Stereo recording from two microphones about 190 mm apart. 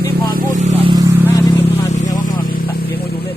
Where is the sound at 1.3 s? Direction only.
15° left (ahead or behind).